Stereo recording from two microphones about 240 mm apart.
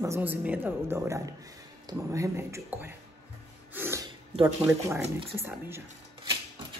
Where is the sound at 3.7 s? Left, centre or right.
Centre.